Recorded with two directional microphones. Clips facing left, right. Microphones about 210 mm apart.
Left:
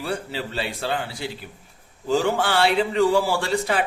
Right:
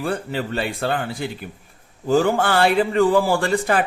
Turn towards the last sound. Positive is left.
turn(degrees=-50)  # may be behind; listen again after turning